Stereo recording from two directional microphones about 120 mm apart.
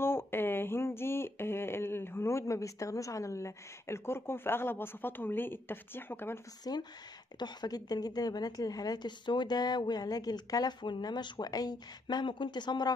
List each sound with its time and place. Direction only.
0.0 s speech: 20° left (ahead or behind)
6.6 s a woman's voice: 35° left (ahead or behind)